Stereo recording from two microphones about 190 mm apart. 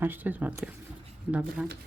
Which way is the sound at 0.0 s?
10° right (ahead or behind).